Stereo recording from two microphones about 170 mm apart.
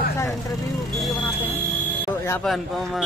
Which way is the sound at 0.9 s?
Centre (ahead or behind).